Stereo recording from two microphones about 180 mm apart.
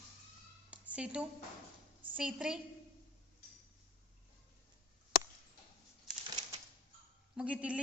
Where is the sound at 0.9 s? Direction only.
5° right (ahead or behind).